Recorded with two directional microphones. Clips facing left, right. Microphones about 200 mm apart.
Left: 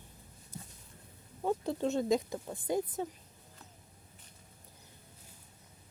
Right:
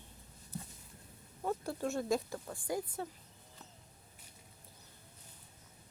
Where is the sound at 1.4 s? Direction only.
20° left (ahead or behind).